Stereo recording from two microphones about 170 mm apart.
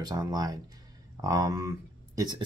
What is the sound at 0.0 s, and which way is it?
Speech, 20° right (ahead or behind).